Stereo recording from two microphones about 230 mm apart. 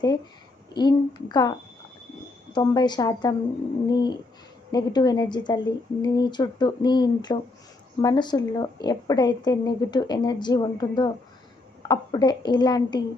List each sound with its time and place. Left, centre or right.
0.7 s a woman's voice: centre